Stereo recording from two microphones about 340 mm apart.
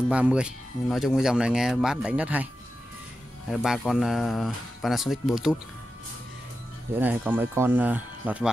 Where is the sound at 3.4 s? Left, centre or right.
Centre.